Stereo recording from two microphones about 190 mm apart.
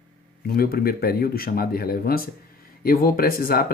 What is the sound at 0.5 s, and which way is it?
Speech, 55° left (ahead or behind).